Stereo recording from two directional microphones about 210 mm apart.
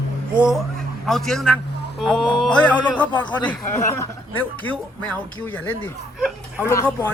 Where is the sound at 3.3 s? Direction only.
20° left (ahead or behind).